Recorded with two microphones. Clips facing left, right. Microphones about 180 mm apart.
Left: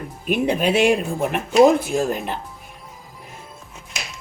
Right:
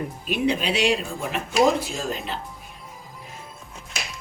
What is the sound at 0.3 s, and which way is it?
Speech, 50° left (ahead or behind).